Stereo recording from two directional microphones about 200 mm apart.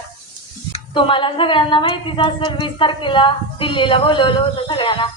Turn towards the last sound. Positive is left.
turn(degrees=25)  # may be behind; listen again after turning